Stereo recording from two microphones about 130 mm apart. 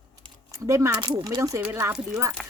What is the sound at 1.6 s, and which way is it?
Speech, 15° right (ahead or behind).